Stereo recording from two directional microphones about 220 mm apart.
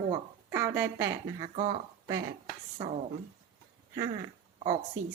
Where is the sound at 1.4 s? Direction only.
25° right (ahead or behind).